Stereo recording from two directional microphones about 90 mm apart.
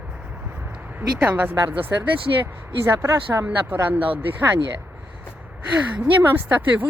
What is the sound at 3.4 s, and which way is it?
Speech, 20° right (ahead or behind).